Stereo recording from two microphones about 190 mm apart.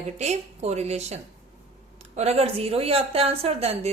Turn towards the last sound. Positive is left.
turn(degrees=-35)  # may be behind; listen again after turning